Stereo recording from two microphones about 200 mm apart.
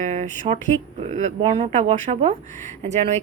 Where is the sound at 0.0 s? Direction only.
35° right (ahead or behind).